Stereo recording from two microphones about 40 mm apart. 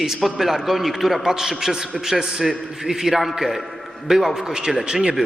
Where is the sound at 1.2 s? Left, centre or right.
Centre.